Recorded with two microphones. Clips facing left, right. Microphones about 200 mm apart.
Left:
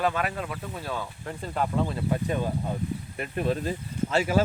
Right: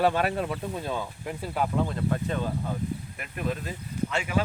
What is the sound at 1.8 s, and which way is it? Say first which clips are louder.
Speech: left 1 dB; 10° left (ahead or behind).